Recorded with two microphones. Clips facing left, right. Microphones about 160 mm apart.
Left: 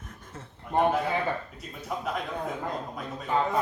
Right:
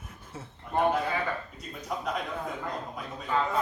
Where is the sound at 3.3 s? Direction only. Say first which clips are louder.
Left 2 dB; 20° left (ahead or behind).